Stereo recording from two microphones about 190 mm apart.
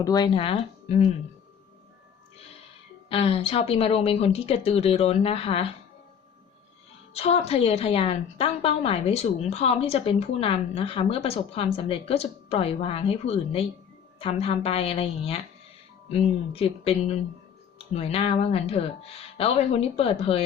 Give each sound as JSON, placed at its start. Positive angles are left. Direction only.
{"t": 0.0, "sound": "speech", "side_deg": 20}
{"t": 3.1, "sound": "a woman's voice", "side_deg": 30}
{"t": 7.1, "sound": "a woman's voice", "side_deg": 30}